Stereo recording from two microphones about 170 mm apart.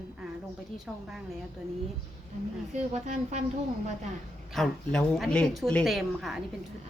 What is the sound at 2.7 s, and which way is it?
Speech, 45° right (ahead or behind).